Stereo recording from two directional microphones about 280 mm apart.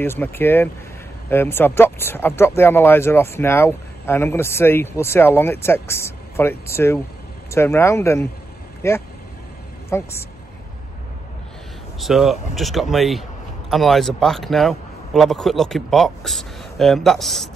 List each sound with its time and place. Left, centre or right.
0.0 s a woman's voice: centre
12.0 s speech: centre